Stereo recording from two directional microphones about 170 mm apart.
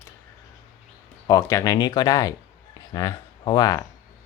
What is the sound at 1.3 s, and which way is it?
Speech, 20° left (ahead or behind).